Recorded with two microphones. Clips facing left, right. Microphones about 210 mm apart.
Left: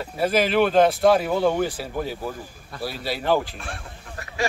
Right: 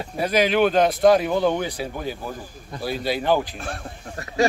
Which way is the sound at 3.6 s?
40° right (ahead or behind).